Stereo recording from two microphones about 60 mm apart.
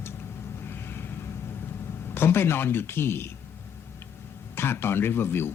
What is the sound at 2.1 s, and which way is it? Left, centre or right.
Speech, left.